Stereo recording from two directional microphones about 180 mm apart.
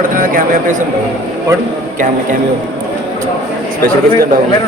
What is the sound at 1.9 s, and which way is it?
Speech, 50° right (ahead or behind).